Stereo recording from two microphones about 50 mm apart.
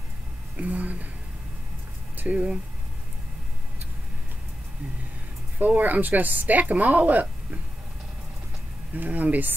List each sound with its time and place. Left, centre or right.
0.6 s speech: right
2.1 s speech: right
5.6 s speech: right
8.9 s speech: right